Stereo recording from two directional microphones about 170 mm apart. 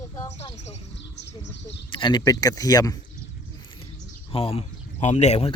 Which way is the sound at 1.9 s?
30° left (ahead or behind).